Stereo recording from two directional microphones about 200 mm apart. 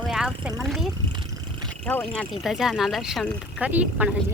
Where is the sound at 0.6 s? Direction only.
Centre (ahead or behind).